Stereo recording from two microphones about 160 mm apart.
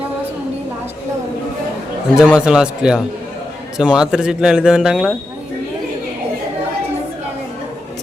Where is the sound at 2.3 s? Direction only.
5° right (ahead or behind).